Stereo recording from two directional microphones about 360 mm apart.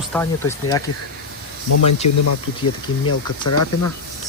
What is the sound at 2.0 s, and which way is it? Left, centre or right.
Speech, left.